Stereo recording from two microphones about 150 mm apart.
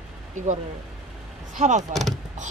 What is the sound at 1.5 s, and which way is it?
Speech, 55° right (ahead or behind).